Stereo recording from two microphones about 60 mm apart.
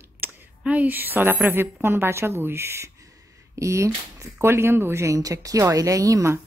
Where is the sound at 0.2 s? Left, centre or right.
Right.